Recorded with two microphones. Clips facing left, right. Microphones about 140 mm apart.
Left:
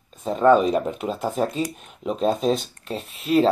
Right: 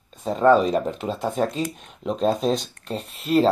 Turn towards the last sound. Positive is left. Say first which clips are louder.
# even
turn(degrees=0)  # may be behind; listen again after turning